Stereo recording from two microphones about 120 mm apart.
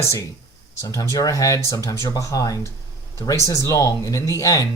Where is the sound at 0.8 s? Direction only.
25° left (ahead or behind).